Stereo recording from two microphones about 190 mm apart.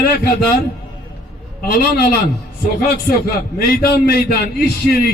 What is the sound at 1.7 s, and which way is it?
Speech, 55° left (ahead or behind).